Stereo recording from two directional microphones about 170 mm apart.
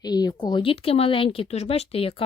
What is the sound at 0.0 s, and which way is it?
Speech, 25° left (ahead or behind).